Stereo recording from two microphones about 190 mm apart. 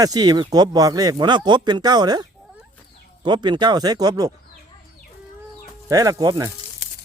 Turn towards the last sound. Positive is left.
turn(degrees=-20)  # may be behind; listen again after turning